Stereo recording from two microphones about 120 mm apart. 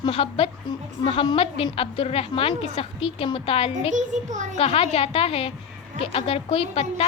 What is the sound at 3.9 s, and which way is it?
Child singing, 90° right.